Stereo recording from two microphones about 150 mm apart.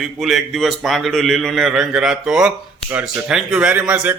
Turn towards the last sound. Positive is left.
turn(degrees=-10)  # may be behind; listen again after turning